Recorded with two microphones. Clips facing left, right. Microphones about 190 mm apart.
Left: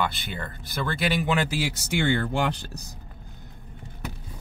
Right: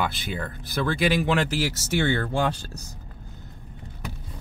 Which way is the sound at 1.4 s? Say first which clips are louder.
Right 2 dB; 15° left (ahead or behind).